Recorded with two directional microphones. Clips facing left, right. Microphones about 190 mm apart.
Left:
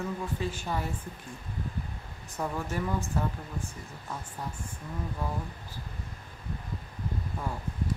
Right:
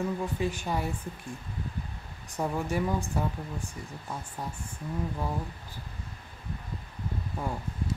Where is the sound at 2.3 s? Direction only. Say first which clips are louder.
Right 3 dB; 15° right (ahead or behind).